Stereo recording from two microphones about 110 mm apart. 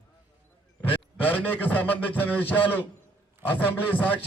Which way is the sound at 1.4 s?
15° left (ahead or behind).